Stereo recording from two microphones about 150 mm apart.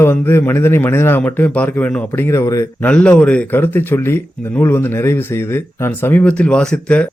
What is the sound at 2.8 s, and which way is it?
Speech, 10° left (ahead or behind).